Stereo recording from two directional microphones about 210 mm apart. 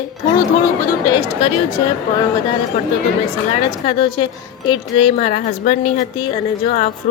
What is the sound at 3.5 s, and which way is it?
Speech, 25° left (ahead or behind).